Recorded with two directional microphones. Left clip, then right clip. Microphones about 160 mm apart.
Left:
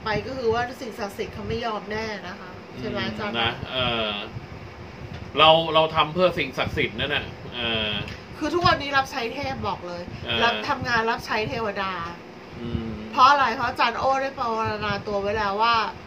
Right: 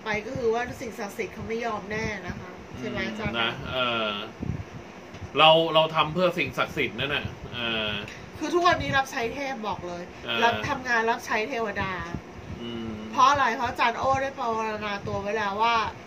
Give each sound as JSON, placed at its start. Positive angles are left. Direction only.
{"t": 0.0, "sound": "a woman's voice", "side_deg": 10}
{"t": 3.3, "sound": "a man's voice", "side_deg": -20}
{"t": 5.3, "sound": "a man's voice", "side_deg": -20}
{"t": 8.4, "sound": "a woman's voice", "side_deg": 15}
{"t": 13.1, "sound": "a woman's voice", "side_deg": 15}